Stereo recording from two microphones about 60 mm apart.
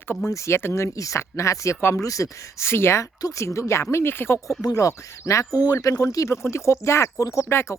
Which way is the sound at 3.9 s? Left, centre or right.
Left.